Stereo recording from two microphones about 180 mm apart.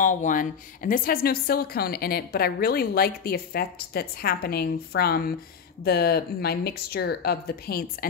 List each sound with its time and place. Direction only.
0.0 s a woman's voice: 45° left (ahead or behind)